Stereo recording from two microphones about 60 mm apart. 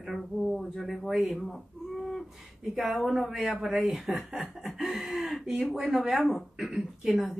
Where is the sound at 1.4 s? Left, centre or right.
Centre.